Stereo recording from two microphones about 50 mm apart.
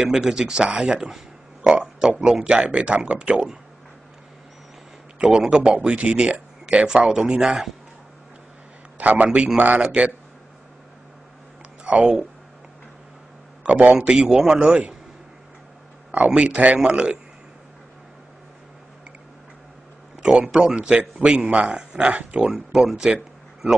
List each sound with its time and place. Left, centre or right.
0.0 s speech: centre
5.2 s speech: centre
8.9 s a man's voice: right
11.8 s speech: right
13.7 s a man's voice: right
13.9 s speech: centre
16.1 s speech: right
20.2 s speech: centre; by 21.7 s right
21.7 s speech: right